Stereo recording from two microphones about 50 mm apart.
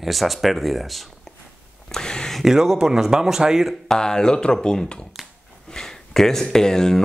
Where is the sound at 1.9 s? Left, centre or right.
Centre.